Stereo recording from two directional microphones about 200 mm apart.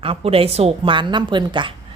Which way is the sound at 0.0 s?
30° right (ahead or behind).